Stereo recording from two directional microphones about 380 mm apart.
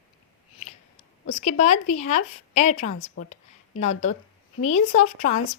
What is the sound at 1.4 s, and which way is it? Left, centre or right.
Speech, centre.